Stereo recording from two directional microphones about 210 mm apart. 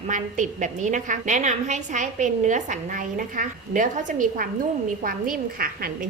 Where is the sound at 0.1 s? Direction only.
35° right (ahead or behind).